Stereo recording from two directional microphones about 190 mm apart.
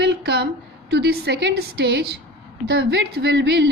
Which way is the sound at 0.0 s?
60° right (ahead or behind).